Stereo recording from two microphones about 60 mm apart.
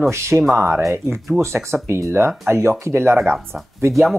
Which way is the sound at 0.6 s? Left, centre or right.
Right.